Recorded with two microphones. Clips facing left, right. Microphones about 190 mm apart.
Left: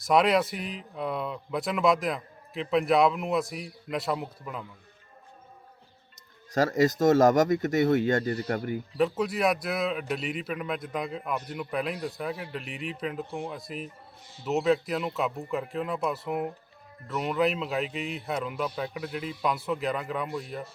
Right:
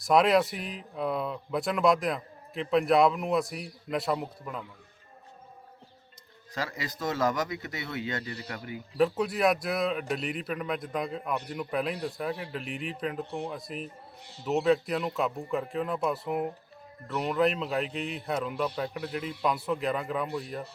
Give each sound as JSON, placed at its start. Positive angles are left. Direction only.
{"t": 0.0, "sound": "a man's voice", "side_deg": 0}
{"t": 6.5, "sound": "speech", "side_deg": 45}
{"t": 9.0, "sound": "a man's voice", "side_deg": 0}